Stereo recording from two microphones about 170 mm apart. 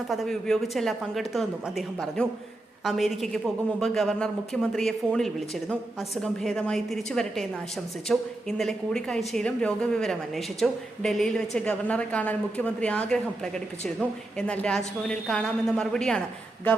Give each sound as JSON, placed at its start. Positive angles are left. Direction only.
{"t": 0.1, "sound": "a woman's voice", "side_deg": 0}